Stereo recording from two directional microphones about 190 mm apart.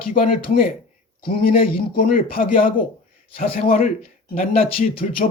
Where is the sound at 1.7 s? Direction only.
50° left (ahead or behind).